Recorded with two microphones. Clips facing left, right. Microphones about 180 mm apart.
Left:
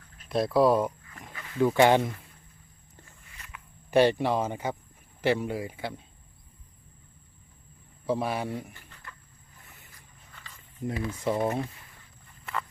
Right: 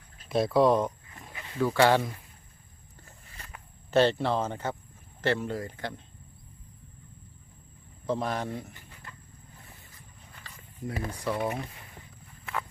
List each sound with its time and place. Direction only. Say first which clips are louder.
0.3 s speech: even; centre (ahead or behind)
1.3 s dog: right 1 dB; 20° right (ahead or behind)
1.6 s speech: left 2 dB; 20° left (ahead or behind)
3.2 s walk: right 2 dB; 35° right (ahead or behind)
3.9 s speech: left 2 dB; 15° left (ahead or behind)
8.0 s speech: left 1 dB; 10° left (ahead or behind)
8.7 s a sound: even; 15° right (ahead or behind)
10.9 s speech: left 1 dB; 45° right (ahead or behind)
11.2 s speech: left 3 dB; 25° left (ahead or behind)